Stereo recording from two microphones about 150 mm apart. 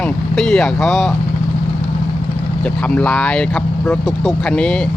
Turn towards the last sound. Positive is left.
turn(degrees=5)  # may be behind; listen again after turning